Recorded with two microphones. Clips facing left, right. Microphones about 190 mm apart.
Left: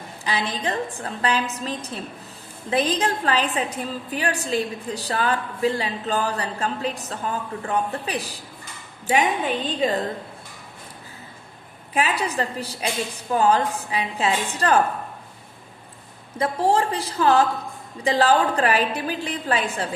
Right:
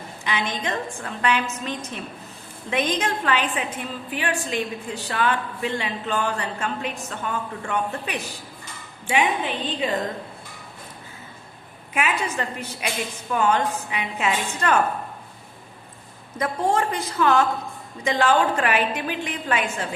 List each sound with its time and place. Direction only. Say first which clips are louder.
0.3 s a woman's voice: left 1 dB; 35° left (ahead or behind)
11.9 s a woman's voice: left 2 dB; 35° left (ahead or behind)
16.4 s a woman's voice: left 2 dB; 30° left (ahead or behind)